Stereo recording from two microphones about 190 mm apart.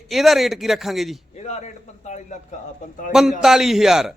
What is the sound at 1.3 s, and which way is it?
A man's voice, 35° left (ahead or behind).